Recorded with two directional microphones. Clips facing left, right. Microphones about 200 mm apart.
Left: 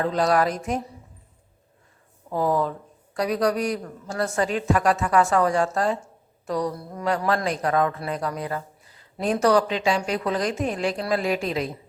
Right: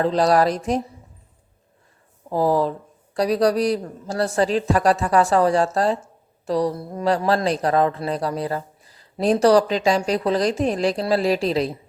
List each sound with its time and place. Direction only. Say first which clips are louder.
0.0 s a woman's voice: right 4 dB; 35° right (ahead or behind)
2.3 s a woman's voice: right 4 dB; 35° right (ahead or behind)